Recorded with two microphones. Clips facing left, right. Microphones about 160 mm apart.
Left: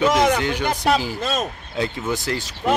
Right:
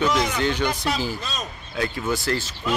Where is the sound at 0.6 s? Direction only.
55° left (ahead or behind).